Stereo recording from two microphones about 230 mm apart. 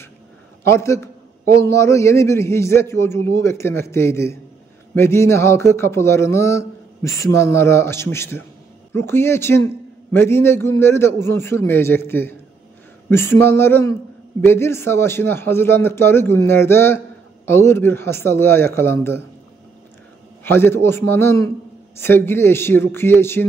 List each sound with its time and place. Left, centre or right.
0.7 s speech: centre
20.4 s speech: centre